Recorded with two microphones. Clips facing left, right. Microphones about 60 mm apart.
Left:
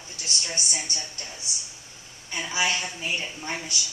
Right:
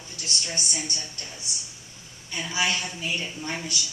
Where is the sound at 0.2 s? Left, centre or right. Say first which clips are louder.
Even; centre.